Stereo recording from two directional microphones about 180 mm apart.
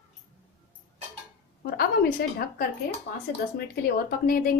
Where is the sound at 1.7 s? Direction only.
55° left (ahead or behind).